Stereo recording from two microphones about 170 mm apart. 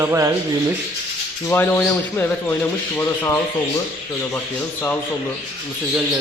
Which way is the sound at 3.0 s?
15° left (ahead or behind).